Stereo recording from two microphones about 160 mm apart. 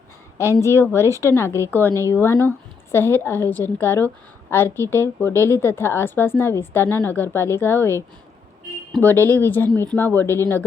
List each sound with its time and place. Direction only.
0.6 s a woman's voice: 15° left (ahead or behind)